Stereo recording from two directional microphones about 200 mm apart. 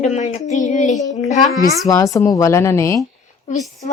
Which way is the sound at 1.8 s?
15° left (ahead or behind).